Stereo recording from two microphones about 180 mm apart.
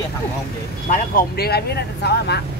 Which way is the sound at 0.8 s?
55° left (ahead or behind).